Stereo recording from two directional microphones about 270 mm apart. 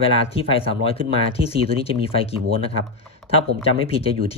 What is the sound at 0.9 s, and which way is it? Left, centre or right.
Speech, left.